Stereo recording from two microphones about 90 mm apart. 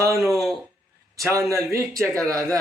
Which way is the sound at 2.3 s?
35° right (ahead or behind).